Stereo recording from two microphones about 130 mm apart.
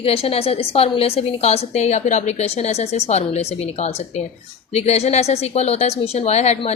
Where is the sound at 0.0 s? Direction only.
50° left (ahead or behind).